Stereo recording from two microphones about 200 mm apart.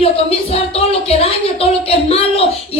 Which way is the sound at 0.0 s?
30° left (ahead or behind).